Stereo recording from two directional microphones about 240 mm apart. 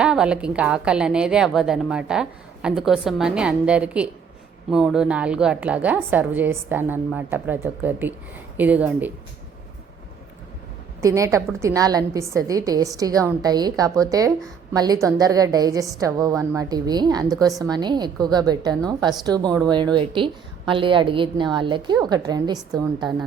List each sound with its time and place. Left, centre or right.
0.0 s a woman's voice: centre
11.0 s a woman's voice: centre